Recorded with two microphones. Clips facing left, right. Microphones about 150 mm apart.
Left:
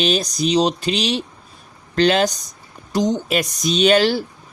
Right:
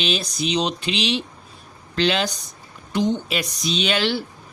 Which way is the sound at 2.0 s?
45° left (ahead or behind).